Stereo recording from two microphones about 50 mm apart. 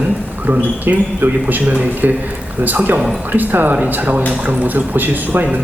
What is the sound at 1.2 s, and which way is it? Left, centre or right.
A man's voice, right.